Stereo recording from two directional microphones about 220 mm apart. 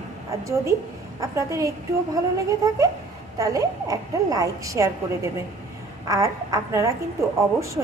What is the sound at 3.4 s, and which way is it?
Speech, 15° right (ahead or behind).